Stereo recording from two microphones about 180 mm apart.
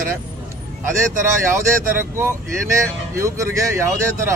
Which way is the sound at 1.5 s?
15° right (ahead or behind).